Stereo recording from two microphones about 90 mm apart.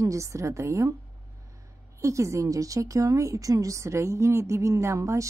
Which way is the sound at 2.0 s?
35° right (ahead or behind).